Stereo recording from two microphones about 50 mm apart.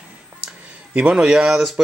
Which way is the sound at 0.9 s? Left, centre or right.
Right.